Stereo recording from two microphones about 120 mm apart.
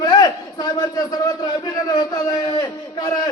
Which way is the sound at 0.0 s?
35° left (ahead or behind).